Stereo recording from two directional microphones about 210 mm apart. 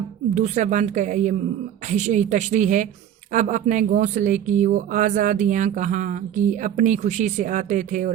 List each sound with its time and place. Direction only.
0.3 s speech: 35° right (ahead or behind)